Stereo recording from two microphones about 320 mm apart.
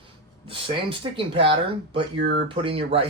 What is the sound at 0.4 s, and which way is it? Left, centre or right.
Speech, centre.